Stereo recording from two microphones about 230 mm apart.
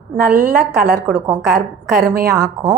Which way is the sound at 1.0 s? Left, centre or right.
Centre.